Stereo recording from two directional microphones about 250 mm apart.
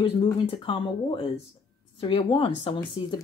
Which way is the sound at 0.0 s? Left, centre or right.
Centre.